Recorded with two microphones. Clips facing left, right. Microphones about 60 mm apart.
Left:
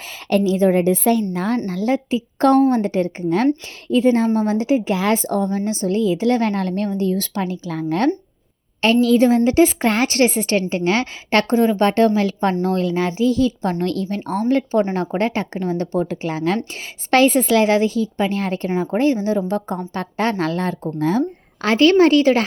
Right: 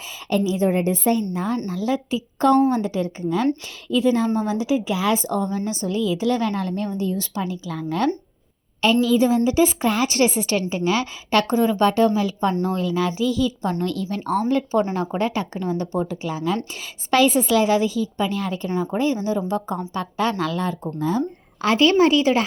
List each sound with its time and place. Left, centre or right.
0.3 s a woman's voice: left
5.8 s a woman's voice: left
10.1 s a woman's voice: left
12.9 s a woman's voice: left
13.7 s a woman's voice: left
18.9 s a woman's voice: left
21.0 s speech: left
21.6 s a woman's voice: left
21.9 s a woman's voice: left